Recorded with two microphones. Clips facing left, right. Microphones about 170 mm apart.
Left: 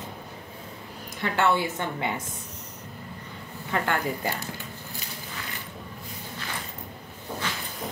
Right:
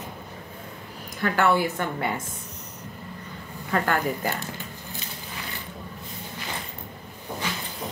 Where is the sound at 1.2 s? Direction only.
25° left (ahead or behind).